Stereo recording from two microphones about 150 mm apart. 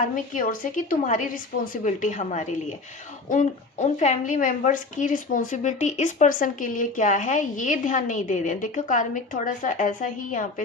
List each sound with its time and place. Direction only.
0.1 s a woman's voice: 60° left (ahead or behind)